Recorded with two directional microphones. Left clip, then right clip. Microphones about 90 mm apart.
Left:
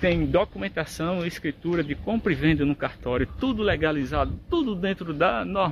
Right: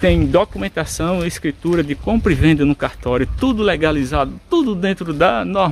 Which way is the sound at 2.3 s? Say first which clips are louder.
Right 8 dB; 55° right (ahead or behind).